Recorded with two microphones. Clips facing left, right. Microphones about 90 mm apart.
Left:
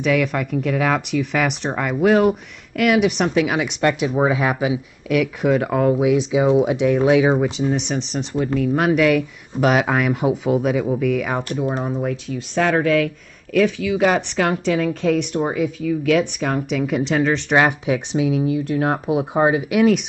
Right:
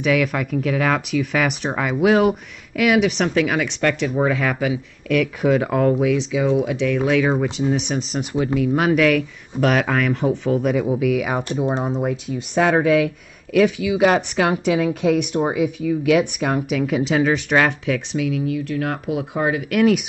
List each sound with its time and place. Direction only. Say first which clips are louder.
0.0 s speech: even; centre (ahead or behind); by 4.7 s 15° left (ahead or behind)
5.1 s speech: even; 5° left (ahead or behind)
7.5 s speech: even; centre (ahead or behind)
11.8 s speech: right 1 dB; 20° right (ahead or behind); by 17.6 s 5° right (ahead or behind)
17.6 s speech: left 4 dB; 15° left (ahead or behind)